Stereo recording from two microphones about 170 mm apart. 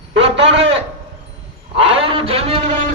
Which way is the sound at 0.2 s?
35° right (ahead or behind).